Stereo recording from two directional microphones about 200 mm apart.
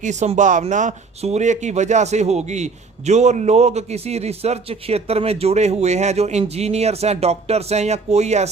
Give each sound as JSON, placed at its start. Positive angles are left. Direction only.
{"t": 0.0, "sound": "a man's voice", "side_deg": -35}